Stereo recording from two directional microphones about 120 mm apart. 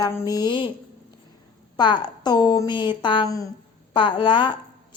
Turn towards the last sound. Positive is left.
turn(degrees=40)  # may be behind; listen again after turning